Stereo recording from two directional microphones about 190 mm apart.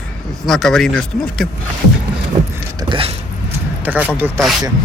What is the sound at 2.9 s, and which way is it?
Mechanisms, 30° right (ahead or behind).